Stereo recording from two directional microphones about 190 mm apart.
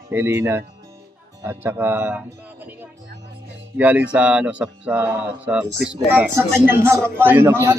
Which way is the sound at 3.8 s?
10° right (ahead or behind).